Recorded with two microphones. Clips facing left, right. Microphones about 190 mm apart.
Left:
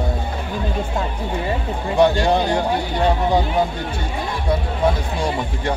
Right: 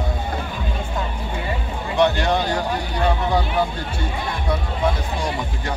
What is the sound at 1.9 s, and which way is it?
Music, 30° left (ahead or behind).